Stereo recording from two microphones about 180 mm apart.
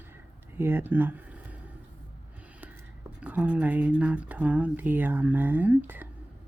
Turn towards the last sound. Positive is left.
turn(degrees=-10)  # may be behind; listen again after turning